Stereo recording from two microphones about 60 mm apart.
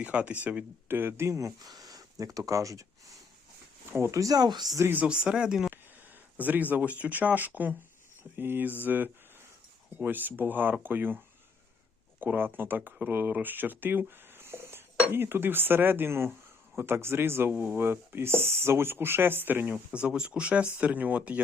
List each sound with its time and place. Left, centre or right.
0.0 s speech: right
0.9 s speech: right
2.5 s speech: right
4.1 s speech: right
5.0 s speech: centre
6.3 s speech: right
12.2 s speech: right
19.9 s speech: centre